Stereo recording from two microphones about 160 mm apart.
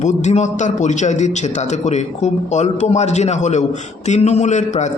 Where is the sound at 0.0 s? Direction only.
45° left (ahead or behind).